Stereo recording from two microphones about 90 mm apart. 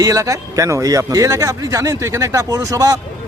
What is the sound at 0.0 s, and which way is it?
A man's voice, 40° right (ahead or behind).